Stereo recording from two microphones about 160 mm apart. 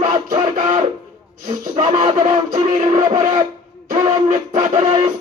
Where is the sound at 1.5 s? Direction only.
50° right (ahead or behind).